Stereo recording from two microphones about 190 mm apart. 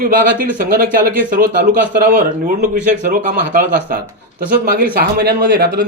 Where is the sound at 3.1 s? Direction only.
45° right (ahead or behind).